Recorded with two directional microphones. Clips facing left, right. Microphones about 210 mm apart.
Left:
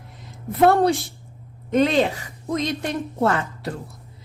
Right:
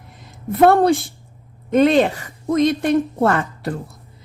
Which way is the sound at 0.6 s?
55° right (ahead or behind).